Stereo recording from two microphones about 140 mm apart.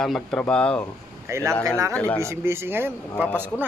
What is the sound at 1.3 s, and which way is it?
Speech, 20° right (ahead or behind).